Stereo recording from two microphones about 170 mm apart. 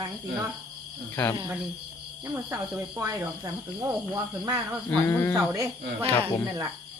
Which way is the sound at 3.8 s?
20° right (ahead or behind).